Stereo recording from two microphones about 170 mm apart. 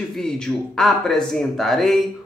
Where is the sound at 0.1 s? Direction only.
5° left (ahead or behind).